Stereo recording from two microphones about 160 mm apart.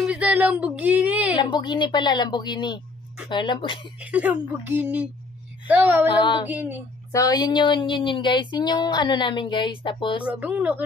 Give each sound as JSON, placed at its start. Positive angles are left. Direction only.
{"t": 0.1, "sound": "a sound", "side_deg": -10}
{"t": 1.3, "sound": "speech", "side_deg": 30}
{"t": 3.8, "sound": "speech", "side_deg": -10}
{"t": 6.0, "sound": "speech", "side_deg": 30}
{"t": 6.5, "sound": "speech", "side_deg": -10}
{"t": 7.1, "sound": "speech", "side_deg": 20}
{"t": 10.2, "sound": "speech", "side_deg": -10}